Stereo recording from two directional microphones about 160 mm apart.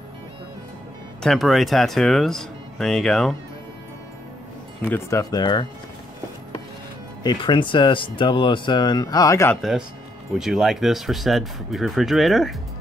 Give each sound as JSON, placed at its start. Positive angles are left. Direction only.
{"t": 1.2, "sound": "speech", "side_deg": 0}
{"t": 4.8, "sound": "speech", "side_deg": 15}
{"t": 7.2, "sound": "speech", "side_deg": 30}
{"t": 9.6, "sound": "speech", "side_deg": 0}